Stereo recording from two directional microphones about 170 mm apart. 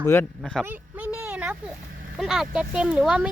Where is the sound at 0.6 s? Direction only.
10° right (ahead or behind).